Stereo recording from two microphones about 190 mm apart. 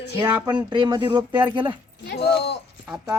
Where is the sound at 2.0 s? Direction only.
60° left (ahead or behind).